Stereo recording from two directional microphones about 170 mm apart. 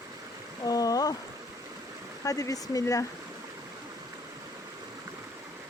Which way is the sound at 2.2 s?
20° left (ahead or behind).